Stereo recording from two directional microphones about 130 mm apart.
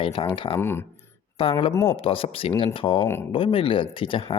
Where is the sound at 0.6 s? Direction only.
20° left (ahead or behind).